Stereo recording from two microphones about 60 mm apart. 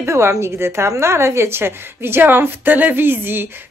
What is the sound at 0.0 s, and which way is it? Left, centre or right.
A woman's voice, right.